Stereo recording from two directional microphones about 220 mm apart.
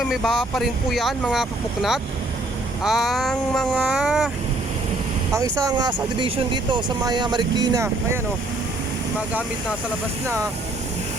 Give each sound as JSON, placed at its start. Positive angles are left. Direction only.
{"t": 0.0, "sound": "speech", "side_deg": 0}
{"t": 5.6, "sound": "speech", "side_deg": -20}
{"t": 10.2, "sound": "speech", "side_deg": -15}